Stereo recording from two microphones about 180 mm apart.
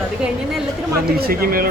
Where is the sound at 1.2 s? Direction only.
55° right (ahead or behind).